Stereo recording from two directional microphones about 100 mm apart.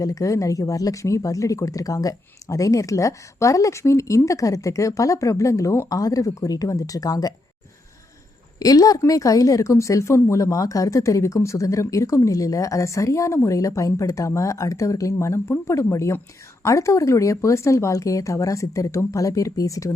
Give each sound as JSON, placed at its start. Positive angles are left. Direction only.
{"t": 0.0, "sound": "a woman's voice", "side_deg": 35}
{"t": 8.5, "sound": "a woman's voice", "side_deg": 40}